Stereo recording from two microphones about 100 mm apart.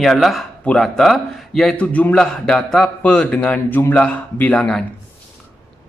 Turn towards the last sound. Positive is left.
turn(degrees=5)  # may be behind; listen again after turning